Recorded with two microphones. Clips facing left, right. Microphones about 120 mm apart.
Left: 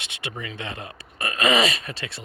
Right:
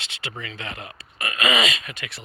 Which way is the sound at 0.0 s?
25° left (ahead or behind).